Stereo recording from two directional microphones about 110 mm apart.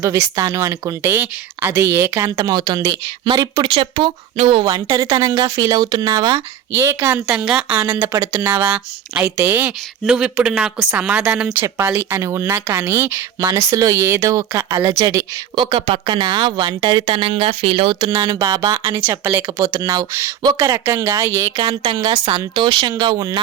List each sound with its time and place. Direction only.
0.0 s speech: 30° right (ahead or behind)
2.4 s speech: 35° right (ahead or behind)
4.6 s speech: 35° right (ahead or behind)
6.7 s speech: 20° right (ahead or behind)
7.3 s speech: 5° right (ahead or behind)
8.1 s speech: 35° right (ahead or behind)
8.4 s speech: 15° right (ahead or behind)
11.6 s speech: 25° right (ahead or behind)
13.4 s speech: 30° right (ahead or behind)
15.5 s speech: 50° right (ahead or behind)
18.2 s speech: 30° right (ahead or behind)
21.5 s speech: 60° right (ahead or behind)
21.9 s speech: 35° right (ahead or behind)
22.3 s speech: 50° right (ahead or behind)